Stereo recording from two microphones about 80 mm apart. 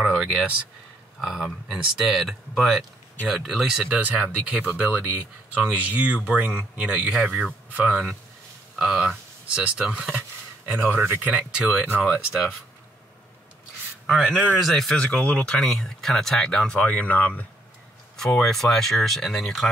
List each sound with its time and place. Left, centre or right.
0.0 s a sound: centre
1.2 s speech: centre
10.6 s speech: right
11.5 s speech: centre
11.8 s speech: centre
14.0 s a man's voice: centre
14.9 s speech: centre
18.1 s speech: centre